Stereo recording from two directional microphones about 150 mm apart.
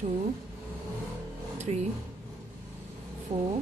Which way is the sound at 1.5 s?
50° right (ahead or behind).